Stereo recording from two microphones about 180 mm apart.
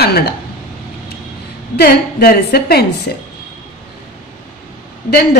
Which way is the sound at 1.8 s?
60° left (ahead or behind).